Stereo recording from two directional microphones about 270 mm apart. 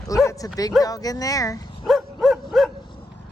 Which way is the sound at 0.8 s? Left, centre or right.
Centre.